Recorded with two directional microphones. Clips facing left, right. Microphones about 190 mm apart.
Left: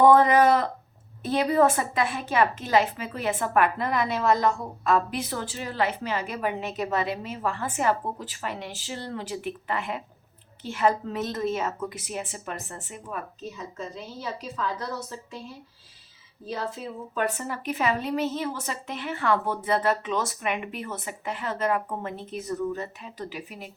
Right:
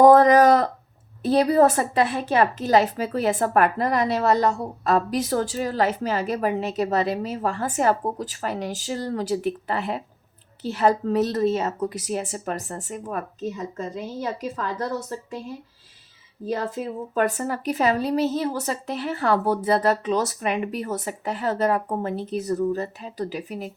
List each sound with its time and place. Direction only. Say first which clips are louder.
0.0 s a sound: right 4 dB; 40° right (ahead or behind)
1.2 s a woman's voice: right 4 dB; 35° right (ahead or behind)
16.5 s a woman's voice: right 6 dB; 45° right (ahead or behind)